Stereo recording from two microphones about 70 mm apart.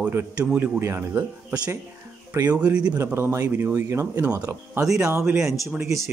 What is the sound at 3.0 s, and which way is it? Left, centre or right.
Speech, right.